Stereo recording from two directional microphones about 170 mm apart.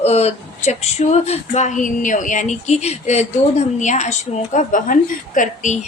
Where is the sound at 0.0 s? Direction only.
40° left (ahead or behind).